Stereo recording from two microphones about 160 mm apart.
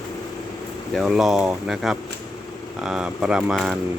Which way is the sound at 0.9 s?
Centre (ahead or behind).